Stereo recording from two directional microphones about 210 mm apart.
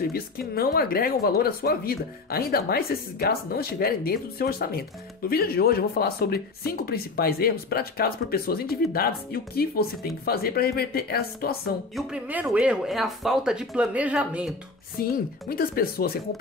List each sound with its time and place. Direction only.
0.1 s speech: 45° left (ahead or behind)
11.9 s speech: 5° right (ahead or behind)
15.0 s speech: 45° left (ahead or behind)